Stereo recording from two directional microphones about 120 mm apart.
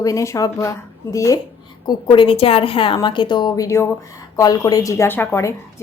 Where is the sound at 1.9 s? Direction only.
40° left (ahead or behind).